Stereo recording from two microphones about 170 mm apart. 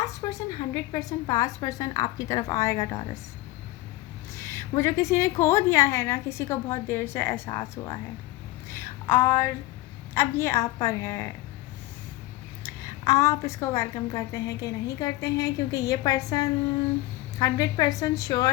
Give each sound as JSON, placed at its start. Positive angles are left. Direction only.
{"t": 0.0, "sound": "a woman's voice", "side_deg": 20}
{"t": 4.4, "sound": "a woman's voice", "side_deg": 15}
{"t": 8.7, "sound": "a sound", "side_deg": 15}
{"t": 10.2, "sound": "a woman's voice", "side_deg": 15}
{"t": 12.6, "sound": "a woman's voice", "side_deg": 20}